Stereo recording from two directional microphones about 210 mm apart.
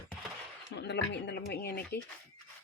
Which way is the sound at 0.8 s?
55° left (ahead or behind).